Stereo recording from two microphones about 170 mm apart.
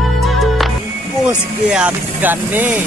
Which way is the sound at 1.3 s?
10° right (ahead or behind).